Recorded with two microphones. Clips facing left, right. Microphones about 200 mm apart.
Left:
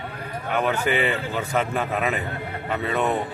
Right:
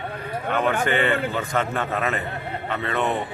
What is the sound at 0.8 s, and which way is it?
Speech, 10° left (ahead or behind).